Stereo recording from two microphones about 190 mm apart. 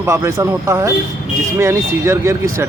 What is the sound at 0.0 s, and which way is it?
Speech, 15° right (ahead or behind).